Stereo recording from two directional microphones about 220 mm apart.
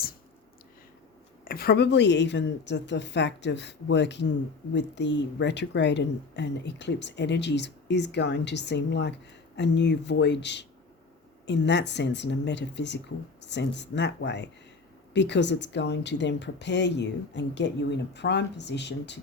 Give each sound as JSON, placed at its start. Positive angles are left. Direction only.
{"t": 1.5, "sound": "speech", "side_deg": 45}